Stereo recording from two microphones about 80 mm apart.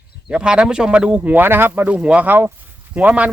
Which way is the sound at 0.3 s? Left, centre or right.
Centre.